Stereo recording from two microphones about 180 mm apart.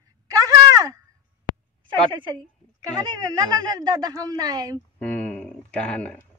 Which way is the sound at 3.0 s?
20° right (ahead or behind).